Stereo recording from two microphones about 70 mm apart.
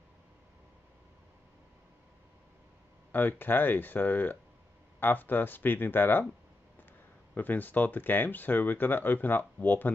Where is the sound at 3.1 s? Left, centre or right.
Left.